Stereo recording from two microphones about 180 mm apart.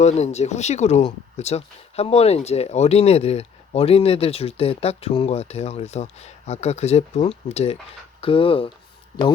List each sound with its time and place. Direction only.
0.0 s speech: 40° left (ahead or behind)